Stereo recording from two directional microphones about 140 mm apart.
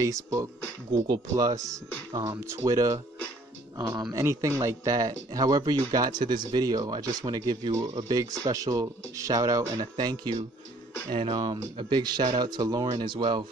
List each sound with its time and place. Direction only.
0.0 s speech: 25° right (ahead or behind)